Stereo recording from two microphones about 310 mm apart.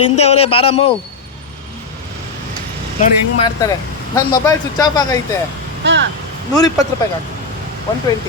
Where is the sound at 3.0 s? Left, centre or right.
Centre.